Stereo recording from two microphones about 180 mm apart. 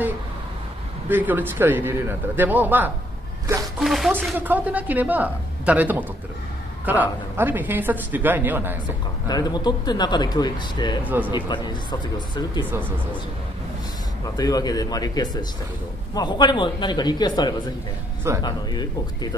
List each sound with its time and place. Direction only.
1.0 s speech: 10° right (ahead or behind)
9.3 s speech: 20° left (ahead or behind)
11.1 s speech: 10° right (ahead or behind)
11.3 s speech: 25° left (ahead or behind)
14.3 s speech: 20° left (ahead or behind)